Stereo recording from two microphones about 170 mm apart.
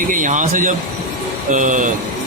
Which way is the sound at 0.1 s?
50° right (ahead or behind).